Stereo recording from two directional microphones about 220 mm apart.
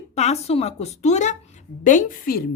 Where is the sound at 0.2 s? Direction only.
30° left (ahead or behind).